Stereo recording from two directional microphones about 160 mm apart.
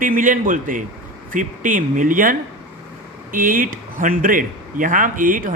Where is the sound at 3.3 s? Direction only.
60° right (ahead or behind).